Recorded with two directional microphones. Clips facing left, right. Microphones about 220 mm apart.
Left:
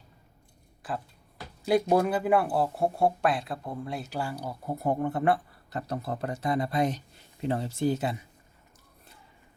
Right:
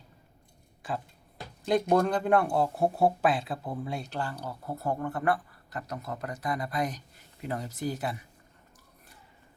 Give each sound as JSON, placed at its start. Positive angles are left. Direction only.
{"t": 0.8, "sound": "speech", "side_deg": 0}